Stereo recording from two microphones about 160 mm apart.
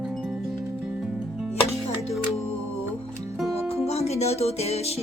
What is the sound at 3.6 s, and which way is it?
Music, 40° left (ahead or behind).